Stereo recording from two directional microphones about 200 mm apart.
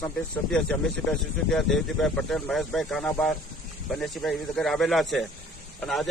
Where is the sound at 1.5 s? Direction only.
Centre (ahead or behind).